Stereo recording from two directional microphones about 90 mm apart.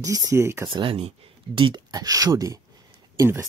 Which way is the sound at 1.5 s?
65° right (ahead or behind).